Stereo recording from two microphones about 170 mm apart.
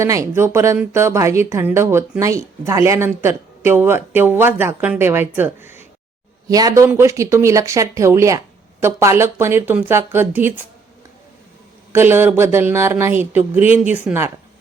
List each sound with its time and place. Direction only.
0.0 s speech: 20° right (ahead or behind)
11.9 s speech: 15° right (ahead or behind)